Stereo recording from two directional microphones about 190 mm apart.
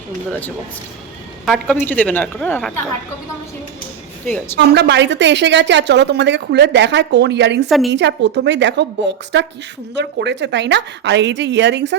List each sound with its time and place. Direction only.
0.3 s a woman's voice: 10° left (ahead or behind)
4.5 s a woman's voice: 60° right (ahead or behind)